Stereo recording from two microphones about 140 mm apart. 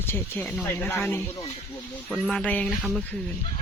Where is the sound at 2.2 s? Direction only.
10° left (ahead or behind).